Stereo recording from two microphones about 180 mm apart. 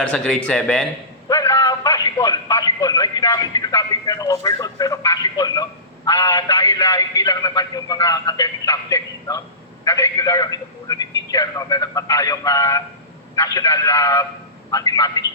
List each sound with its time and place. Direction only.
0.0 s a man's voice: 5° left (ahead or behind); by 15.2 s 20° left (ahead or behind)